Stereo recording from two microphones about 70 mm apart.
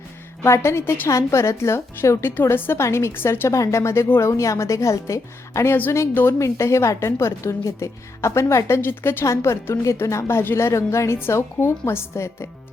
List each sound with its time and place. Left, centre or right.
0.4 s a woman's voice: left
3.5 s a woman's voice: left
9.2 s a woman's voice: left